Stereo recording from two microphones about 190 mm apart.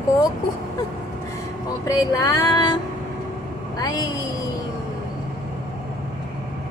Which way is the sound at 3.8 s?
20° left (ahead or behind).